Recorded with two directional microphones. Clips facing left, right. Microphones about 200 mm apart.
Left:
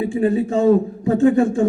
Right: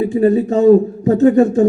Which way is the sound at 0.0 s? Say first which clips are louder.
Right 5 dB; 40° right (ahead or behind).